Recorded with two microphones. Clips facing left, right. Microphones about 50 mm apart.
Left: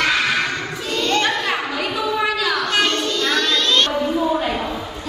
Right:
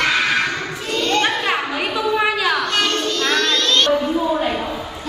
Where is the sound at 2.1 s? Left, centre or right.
Right.